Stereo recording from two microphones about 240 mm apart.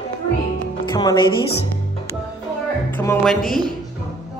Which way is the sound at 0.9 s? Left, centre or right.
Centre.